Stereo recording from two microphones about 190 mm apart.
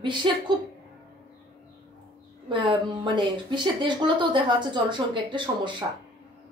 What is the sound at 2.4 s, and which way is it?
Speech, 25° right (ahead or behind).